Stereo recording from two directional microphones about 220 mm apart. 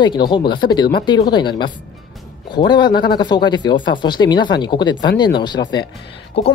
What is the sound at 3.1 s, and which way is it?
Speech, 20° left (ahead or behind).